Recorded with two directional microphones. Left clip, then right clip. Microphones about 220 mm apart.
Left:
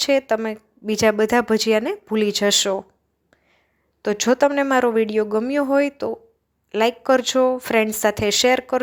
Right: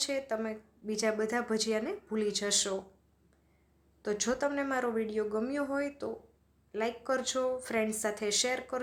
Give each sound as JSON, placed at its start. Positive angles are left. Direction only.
{"t": 0.0, "sound": "speech", "side_deg": 40}
{"t": 4.0, "sound": "speech", "side_deg": 35}